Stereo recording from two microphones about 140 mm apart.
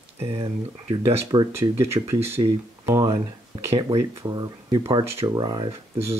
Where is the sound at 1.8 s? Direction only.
20° right (ahead or behind).